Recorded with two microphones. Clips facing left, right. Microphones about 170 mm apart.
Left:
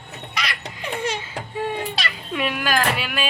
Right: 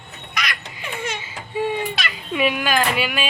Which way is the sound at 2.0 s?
35° left (ahead or behind).